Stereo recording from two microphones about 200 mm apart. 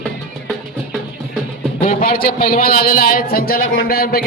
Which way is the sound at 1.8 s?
45° left (ahead or behind).